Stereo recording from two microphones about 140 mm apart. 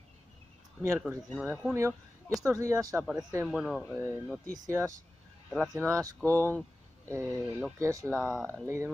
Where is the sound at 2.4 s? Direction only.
20° right (ahead or behind).